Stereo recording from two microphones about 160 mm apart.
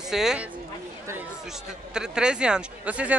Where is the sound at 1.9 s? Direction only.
5° right (ahead or behind).